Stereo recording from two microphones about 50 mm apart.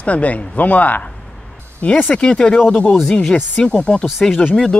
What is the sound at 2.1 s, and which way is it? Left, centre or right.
Speech, centre.